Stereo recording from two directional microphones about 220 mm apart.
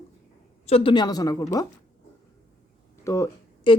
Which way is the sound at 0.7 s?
25° left (ahead or behind).